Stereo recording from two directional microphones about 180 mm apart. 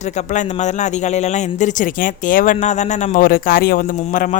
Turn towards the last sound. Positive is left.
turn(degrees=50)  # may be behind; listen again after turning